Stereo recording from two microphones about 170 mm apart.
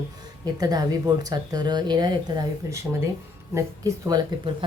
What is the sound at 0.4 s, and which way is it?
Speech, 20° right (ahead or behind).